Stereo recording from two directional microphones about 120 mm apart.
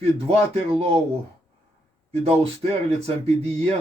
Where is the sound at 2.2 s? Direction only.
60° right (ahead or behind).